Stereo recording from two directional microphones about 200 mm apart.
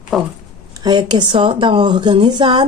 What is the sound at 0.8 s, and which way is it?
Speech, 20° right (ahead or behind).